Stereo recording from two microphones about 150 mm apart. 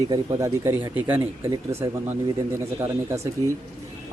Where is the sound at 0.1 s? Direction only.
20° right (ahead or behind).